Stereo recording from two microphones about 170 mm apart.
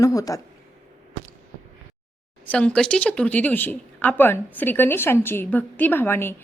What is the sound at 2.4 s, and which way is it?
Speech, 10° left (ahead or behind).